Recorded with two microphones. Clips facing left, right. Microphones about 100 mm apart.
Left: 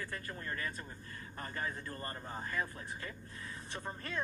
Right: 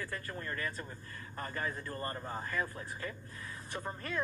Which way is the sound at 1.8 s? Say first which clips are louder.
Right 4 dB; 35° right (ahead or behind).